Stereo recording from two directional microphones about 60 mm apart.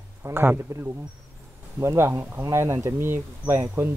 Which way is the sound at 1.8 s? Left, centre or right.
Right.